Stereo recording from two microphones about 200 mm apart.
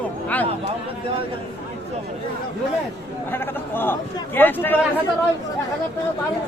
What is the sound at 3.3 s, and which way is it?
A man's voice, 10° left (ahead or behind).